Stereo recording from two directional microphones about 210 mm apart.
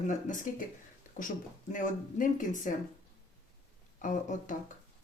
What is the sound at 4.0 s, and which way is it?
Speech, 40° left (ahead or behind).